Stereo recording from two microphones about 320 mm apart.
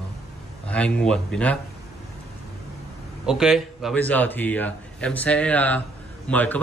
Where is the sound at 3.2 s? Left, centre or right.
Centre.